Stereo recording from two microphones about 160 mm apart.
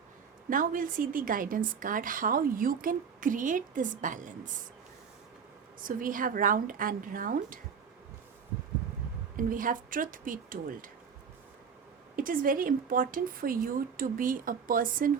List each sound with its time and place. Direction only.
0.5 s a woman's voice: 60° right (ahead or behind)
5.8 s a woman's voice: 60° right (ahead or behind)
9.3 s a woman's voice: 60° right (ahead or behind)
12.1 s a woman's voice: 60° right (ahead or behind)